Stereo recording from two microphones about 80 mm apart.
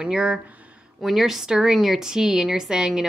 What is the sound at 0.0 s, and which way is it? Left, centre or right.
A woman's voice, centre.